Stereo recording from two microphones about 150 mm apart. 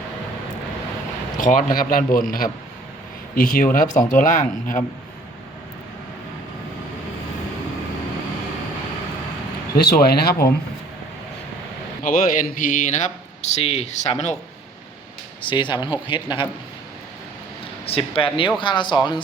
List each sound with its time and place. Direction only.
1.4 s a man's voice: 65° left (ahead or behind)
9.7 s speech: 90° left
12.0 s speech: 65° left (ahead or behind)
13.4 s speech: 45° left (ahead or behind)
15.4 s speech: 35° left (ahead or behind)
17.8 s speech: 40° left (ahead or behind)